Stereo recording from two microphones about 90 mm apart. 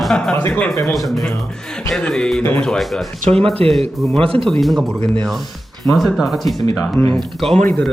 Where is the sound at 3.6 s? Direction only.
90° right.